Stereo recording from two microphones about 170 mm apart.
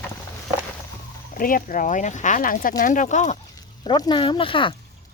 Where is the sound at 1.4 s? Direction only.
55° left (ahead or behind).